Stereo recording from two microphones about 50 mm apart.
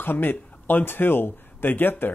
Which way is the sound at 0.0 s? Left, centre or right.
Left.